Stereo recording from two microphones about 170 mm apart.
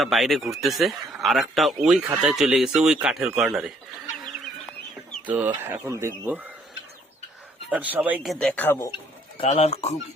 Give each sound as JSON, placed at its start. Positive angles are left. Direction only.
{"t": 0.0, "sound": "speech", "side_deg": 0}
{"t": 5.2, "sound": "speech", "side_deg": -10}
{"t": 7.7, "sound": "speech", "side_deg": -10}
{"t": 9.4, "sound": "speech", "side_deg": 35}